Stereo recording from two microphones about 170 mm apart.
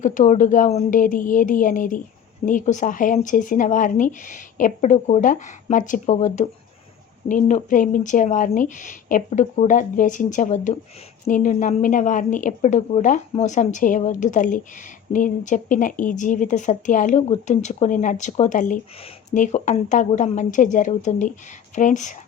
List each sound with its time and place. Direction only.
0.0 s speech: 50° left (ahead or behind)